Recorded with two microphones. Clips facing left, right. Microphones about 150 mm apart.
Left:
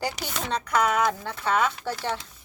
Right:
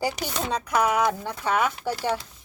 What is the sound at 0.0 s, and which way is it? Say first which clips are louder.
A woman's voice: right 3 dB; 10° right (ahead or behind).